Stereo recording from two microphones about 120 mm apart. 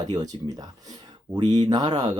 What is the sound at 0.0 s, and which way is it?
Speech, 30° right (ahead or behind).